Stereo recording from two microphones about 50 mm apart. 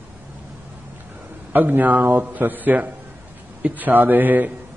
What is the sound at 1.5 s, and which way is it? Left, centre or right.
A man's voice, right.